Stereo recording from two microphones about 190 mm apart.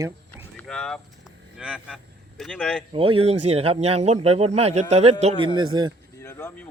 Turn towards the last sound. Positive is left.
turn(degrees=15)  # may be behind; listen again after turning